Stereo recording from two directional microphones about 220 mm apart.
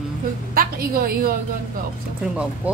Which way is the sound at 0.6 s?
40° right (ahead or behind).